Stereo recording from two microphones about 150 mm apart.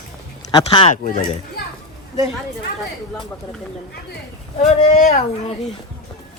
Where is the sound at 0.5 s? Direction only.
35° left (ahead or behind).